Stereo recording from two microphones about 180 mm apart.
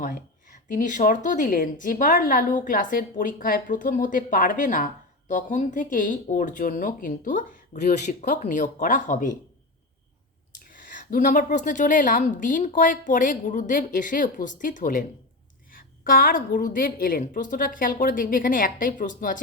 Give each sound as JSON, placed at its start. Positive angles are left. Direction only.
{"t": 0.0, "sound": "speech", "side_deg": 50}
{"t": 10.6, "sound": "speech", "side_deg": 50}